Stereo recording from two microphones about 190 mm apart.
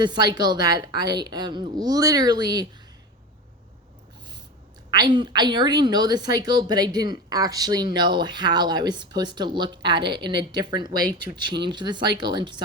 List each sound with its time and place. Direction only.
0.0 s a woman's voice: 25° right (ahead or behind)
4.9 s a woman's voice: 20° right (ahead or behind)